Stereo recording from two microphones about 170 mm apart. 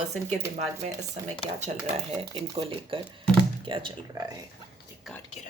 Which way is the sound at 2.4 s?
30° right (ahead or behind).